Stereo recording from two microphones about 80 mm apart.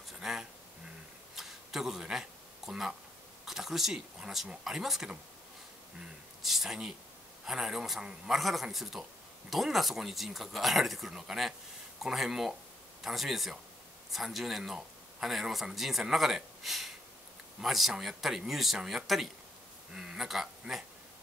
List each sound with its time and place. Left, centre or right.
0.2 s a sound: centre
3.4 s speech: centre
6.4 s speech: centre